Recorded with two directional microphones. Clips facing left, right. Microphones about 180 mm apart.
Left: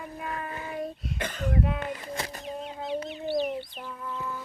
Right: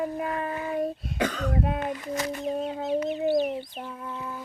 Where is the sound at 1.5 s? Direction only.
40° right (ahead or behind).